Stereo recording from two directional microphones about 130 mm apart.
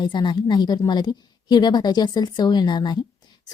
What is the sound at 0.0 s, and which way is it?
Speech, 35° left (ahead or behind).